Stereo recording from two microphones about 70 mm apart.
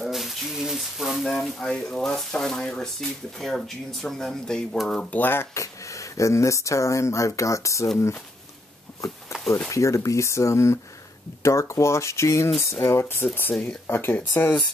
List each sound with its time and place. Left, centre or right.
0.0 s a sound: centre
5.1 s speech: left
5.5 s speech: left
9.7 s speech: left